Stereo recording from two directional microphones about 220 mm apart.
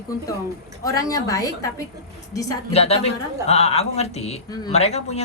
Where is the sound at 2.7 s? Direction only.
30° left (ahead or behind).